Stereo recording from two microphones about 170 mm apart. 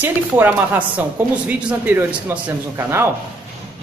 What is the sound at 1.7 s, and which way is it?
A man's voice, 10° right (ahead or behind).